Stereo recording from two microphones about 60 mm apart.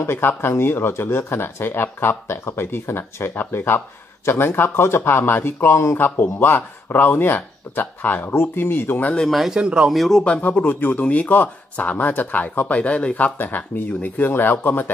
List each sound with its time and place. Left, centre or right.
0.0 s speech: left
5.9 s speech: left
9.3 s speech: centre
9.6 s speech: centre
9.8 s speech: centre
10.5 s speech: left